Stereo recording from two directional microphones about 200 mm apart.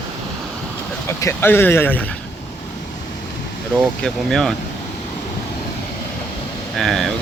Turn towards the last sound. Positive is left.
turn(degrees=0)  # may be behind; listen again after turning